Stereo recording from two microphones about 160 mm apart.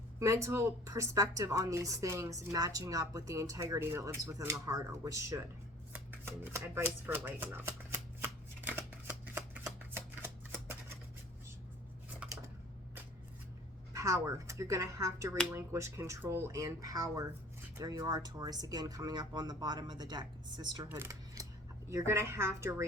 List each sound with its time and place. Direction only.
0.2 s a woman's voice: 20° right (ahead or behind)
5.9 s shuffling cards: 15° right (ahead or behind)
13.9 s a woman's voice: 20° right (ahead or behind)
20.9 s a sound: 20° right (ahead or behind)
21.8 s a woman's voice: 15° right (ahead or behind)